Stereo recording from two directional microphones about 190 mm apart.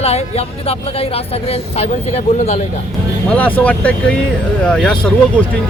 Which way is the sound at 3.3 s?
10° left (ahead or behind).